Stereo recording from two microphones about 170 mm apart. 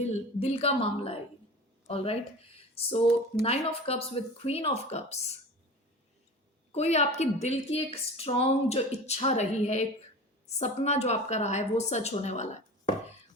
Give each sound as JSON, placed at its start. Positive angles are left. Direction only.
{"t": 0.0, "sound": "a woman's voice", "side_deg": 40}
{"t": 6.7, "sound": "a woman's voice", "side_deg": 40}